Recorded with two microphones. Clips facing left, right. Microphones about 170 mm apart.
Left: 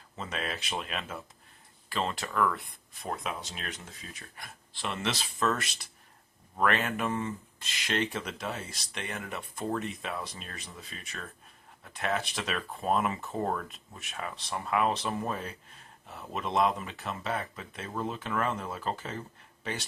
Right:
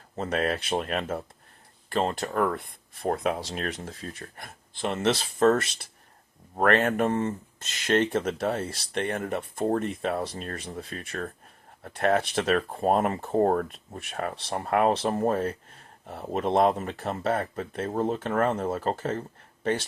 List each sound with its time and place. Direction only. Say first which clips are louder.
0.2 s speech: right 9 dB; 55° right (ahead or behind)
3.1 s speech: right 9 dB; 55° right (ahead or behind)
5.5 s speech: right 9 dB; 25° right (ahead or behind)
6.6 s speech: right 6 dB; 50° right (ahead or behind)